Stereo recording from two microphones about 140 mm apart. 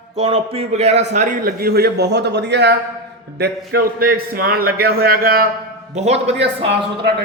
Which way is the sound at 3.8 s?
90° right.